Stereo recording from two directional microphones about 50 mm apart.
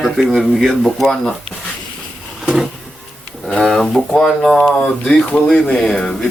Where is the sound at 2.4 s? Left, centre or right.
Centre.